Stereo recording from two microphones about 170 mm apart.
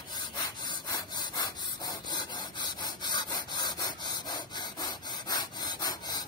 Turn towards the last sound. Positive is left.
turn(degrees=25)  # may be behind; listen again after turning